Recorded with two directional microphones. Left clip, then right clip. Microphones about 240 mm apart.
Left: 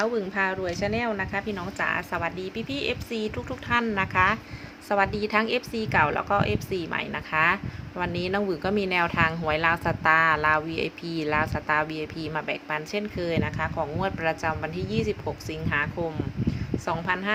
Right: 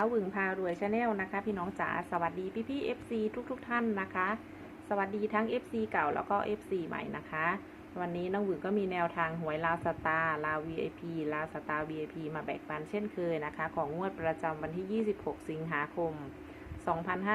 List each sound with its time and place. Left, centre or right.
0.0 s a woman's voice: centre
16.8 s speech: centre